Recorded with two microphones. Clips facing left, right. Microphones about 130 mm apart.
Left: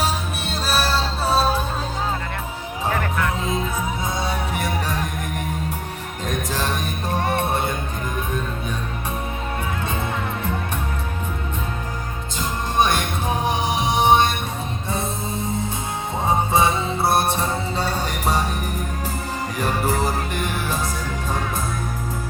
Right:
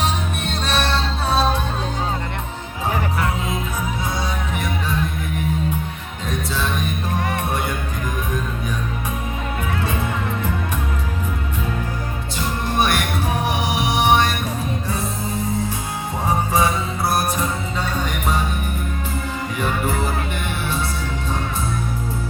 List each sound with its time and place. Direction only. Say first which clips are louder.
0.0 s music: right 1 dB; 5° left (ahead or behind)
6.2 s music: even; 45° left (ahead or behind); by 7.8 s 25° left (ahead or behind)
12.4 s music: even; 20° left (ahead or behind); by 18.4 s 35° left (ahead or behind)
19.5 s music: left 1 dB; 35° left (ahead or behind)